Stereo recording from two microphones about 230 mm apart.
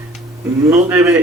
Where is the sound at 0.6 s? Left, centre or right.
Centre.